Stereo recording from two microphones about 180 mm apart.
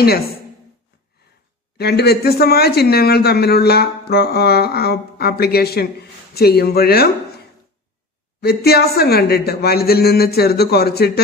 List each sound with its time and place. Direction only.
1.8 s speech: 65° left (ahead or behind)
8.4 s speech: 60° left (ahead or behind)